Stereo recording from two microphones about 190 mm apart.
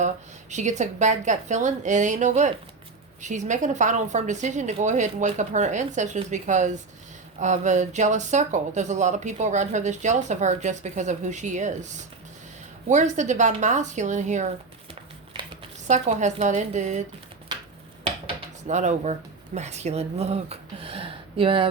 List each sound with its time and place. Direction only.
0.5 s speech: 40° right (ahead or behind)
12.9 s speech: 40° right (ahead or behind)
15.9 s speech: 40° right (ahead or behind)
18.0 s dishes: 35° right (ahead or behind)
19.5 s speech: 35° right (ahead or behind)